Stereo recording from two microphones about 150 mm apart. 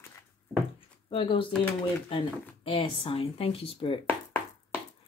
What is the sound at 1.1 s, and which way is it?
Speech, 35° left (ahead or behind).